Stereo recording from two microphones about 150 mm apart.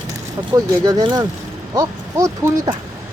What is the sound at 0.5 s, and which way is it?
Speech, 25° right (ahead or behind).